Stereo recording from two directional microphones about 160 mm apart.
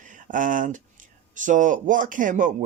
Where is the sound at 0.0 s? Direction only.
55° right (ahead or behind).